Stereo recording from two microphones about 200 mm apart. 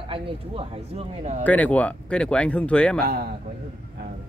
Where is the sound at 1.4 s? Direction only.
5° left (ahead or behind).